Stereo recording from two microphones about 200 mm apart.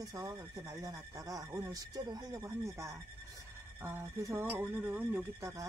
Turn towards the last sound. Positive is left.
turn(degrees=-15)  # may be behind; listen again after turning